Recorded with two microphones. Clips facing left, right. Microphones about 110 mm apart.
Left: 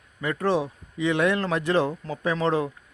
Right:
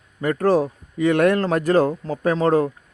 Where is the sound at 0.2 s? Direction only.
45° right (ahead or behind).